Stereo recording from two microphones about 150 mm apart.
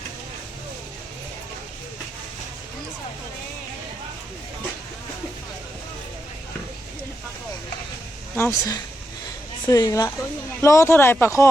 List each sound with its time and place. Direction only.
8.4 s speech: 20° left (ahead or behind)